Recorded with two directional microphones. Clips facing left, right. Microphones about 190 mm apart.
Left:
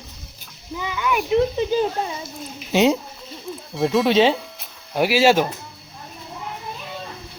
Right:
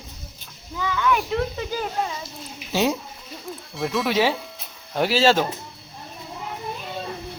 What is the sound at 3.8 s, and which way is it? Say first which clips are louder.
Speech: left 6 dB; centre (ahead or behind).